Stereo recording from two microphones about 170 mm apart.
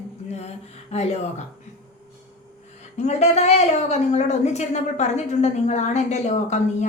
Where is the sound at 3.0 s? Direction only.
40° left (ahead or behind).